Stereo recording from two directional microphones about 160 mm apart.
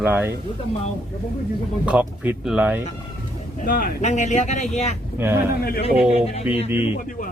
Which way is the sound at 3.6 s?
60° left (ahead or behind).